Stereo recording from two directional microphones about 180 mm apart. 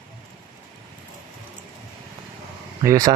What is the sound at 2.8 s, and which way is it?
Speech, 20° right (ahead or behind).